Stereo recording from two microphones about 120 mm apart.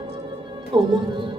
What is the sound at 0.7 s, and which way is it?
Speech, 40° right (ahead or behind).